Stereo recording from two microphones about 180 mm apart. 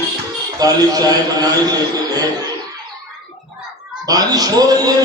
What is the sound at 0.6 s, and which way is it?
Speech, 20° right (ahead or behind).